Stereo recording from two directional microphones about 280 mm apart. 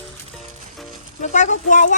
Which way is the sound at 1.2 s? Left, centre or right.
Left.